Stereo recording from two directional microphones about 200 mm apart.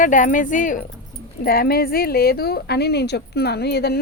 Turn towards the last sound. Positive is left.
turn(degrees=55)  # may be behind; listen again after turning